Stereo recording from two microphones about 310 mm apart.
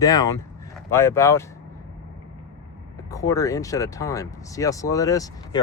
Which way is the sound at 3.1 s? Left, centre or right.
Centre.